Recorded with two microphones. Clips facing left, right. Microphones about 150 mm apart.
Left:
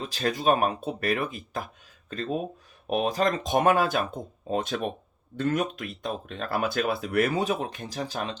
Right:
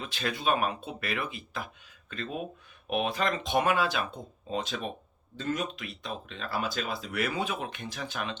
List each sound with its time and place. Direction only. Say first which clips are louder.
0.0 s speech: left 5 dB; 40° left (ahead or behind)